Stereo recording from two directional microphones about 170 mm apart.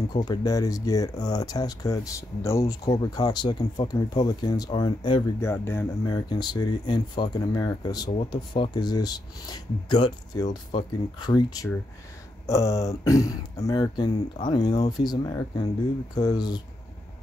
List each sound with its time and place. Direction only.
0.1 s speech: 25° left (ahead or behind)
5.4 s speech: 15° left (ahead or behind)